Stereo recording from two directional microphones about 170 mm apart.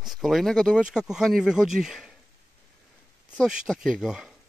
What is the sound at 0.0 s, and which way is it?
Speech, centre (ahead or behind).